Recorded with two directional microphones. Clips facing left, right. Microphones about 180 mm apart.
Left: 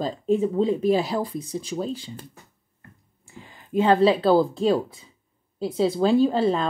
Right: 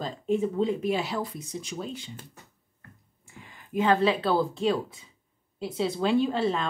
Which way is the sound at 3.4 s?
30° left (ahead or behind).